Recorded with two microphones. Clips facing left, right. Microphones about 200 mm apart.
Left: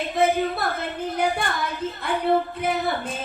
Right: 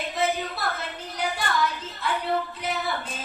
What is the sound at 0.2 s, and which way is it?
Child singing, 55° left (ahead or behind).